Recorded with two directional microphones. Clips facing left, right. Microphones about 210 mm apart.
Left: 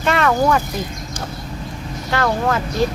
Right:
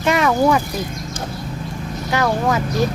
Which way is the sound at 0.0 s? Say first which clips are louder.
Right 1 dB; 10° right (ahead or behind).